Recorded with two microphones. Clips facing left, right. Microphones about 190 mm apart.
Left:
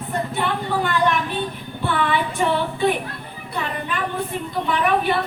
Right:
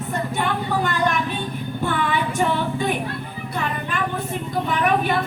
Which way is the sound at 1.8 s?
45° right (ahead or behind).